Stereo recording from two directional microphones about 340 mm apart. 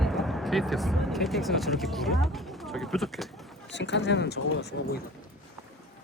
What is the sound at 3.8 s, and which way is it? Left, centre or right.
Speech, left.